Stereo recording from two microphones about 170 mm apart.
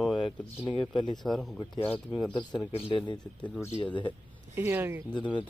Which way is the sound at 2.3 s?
25° left (ahead or behind).